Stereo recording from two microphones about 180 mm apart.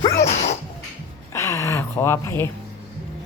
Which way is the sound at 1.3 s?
15° left (ahead or behind).